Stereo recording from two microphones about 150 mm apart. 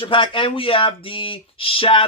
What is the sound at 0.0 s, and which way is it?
Speech, 35° left (ahead or behind).